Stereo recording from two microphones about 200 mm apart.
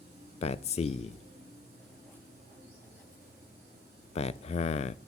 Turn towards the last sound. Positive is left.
turn(degrees=30)  # may be behind; listen again after turning